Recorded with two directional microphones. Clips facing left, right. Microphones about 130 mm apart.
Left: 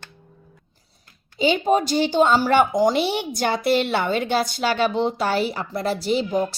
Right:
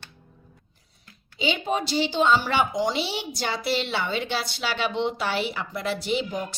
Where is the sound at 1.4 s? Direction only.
45° left (ahead or behind).